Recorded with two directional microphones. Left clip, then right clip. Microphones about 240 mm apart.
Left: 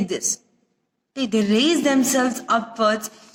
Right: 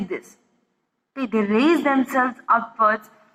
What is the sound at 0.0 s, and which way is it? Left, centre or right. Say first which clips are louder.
A woman's voice: left 6 dB; left.